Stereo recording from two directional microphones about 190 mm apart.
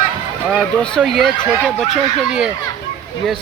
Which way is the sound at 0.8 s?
Centre (ahead or behind).